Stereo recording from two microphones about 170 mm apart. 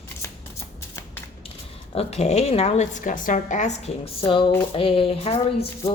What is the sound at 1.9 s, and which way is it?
A woman's voice, 40° left (ahead or behind).